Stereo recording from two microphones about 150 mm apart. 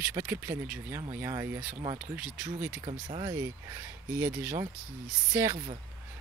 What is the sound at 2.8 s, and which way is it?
Speech, 30° right (ahead or behind).